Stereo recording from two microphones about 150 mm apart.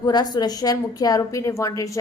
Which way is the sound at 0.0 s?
25° left (ahead or behind).